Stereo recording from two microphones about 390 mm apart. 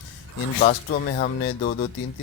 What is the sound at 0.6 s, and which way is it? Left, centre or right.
Speech, left.